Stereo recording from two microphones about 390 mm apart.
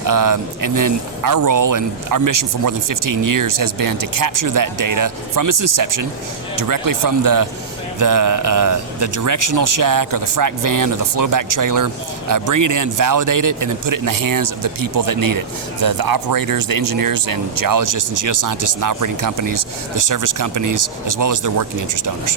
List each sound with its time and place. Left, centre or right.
0.0 s a man's voice: right